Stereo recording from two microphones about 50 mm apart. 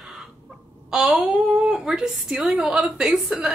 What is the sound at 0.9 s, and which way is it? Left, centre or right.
A woman's voice, centre.